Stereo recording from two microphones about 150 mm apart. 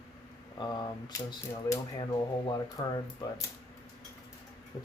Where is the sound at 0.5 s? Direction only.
30° left (ahead or behind).